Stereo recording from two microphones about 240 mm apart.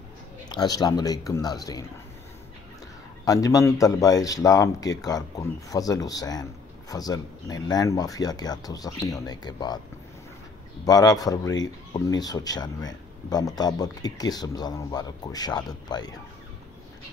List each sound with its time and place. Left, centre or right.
0.5 s a man's voice: centre
3.3 s a man's voice: centre
10.9 s a man's voice: centre